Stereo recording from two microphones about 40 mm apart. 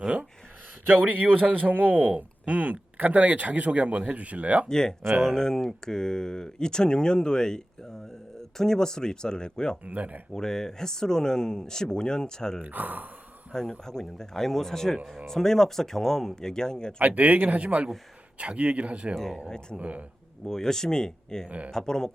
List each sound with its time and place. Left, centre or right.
0.9 s a man's voice: right
2.1 s speech: right
4.7 s speech: centre
5.0 s speech: right
5.3 s speech: centre
9.8 s a man's voice: right
10.3 s speech: centre
12.6 s a man's voice: right
13.5 s speech: centre
17.0 s speech: right
19.1 s speech: centre
19.7 s speech: right
20.4 s speech: centre